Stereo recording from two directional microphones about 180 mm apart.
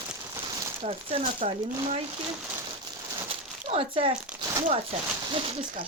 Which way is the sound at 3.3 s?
30° right (ahead or behind).